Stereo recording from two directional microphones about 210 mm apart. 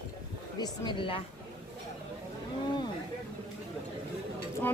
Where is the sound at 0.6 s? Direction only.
20° left (ahead or behind).